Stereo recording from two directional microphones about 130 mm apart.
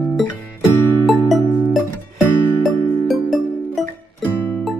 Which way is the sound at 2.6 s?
Centre (ahead or behind).